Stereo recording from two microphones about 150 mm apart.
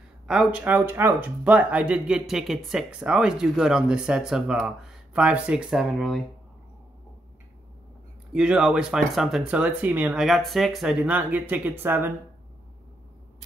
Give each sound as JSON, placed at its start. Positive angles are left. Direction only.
{"t": 0.3, "sound": "speech", "side_deg": -5}
{"t": 8.3, "sound": "speech", "side_deg": -5}